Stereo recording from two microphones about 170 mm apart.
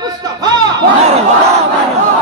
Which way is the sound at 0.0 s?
25° right (ahead or behind).